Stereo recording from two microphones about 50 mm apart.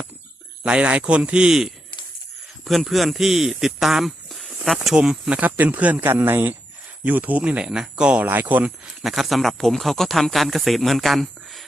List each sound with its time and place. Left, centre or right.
0.6 s speech: right
2.6 s speech: centre
4.9 s speech: centre
5.5 s speech: right
6.1 s speech: right; by 8.2 s centre
8.2 s speech: right
9.0 s speech: centre